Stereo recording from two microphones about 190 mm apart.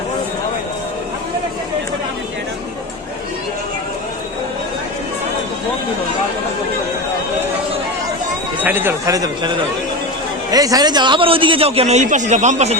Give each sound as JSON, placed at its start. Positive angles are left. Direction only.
{"t": 8.6, "sound": "speech", "side_deg": -10}
{"t": 10.5, "sound": "a man's voice", "side_deg": -20}